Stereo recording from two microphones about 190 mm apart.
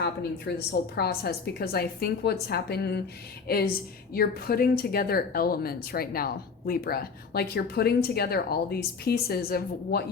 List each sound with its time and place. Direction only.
0.0 s a woman's voice: 60° left (ahead or behind)